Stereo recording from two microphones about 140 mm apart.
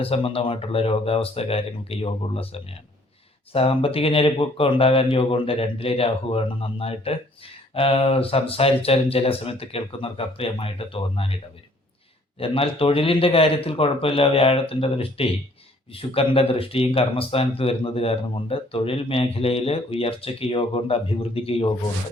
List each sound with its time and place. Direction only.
0.0 s speech: 45° left (ahead or behind)
12.4 s speech: 40° left (ahead or behind)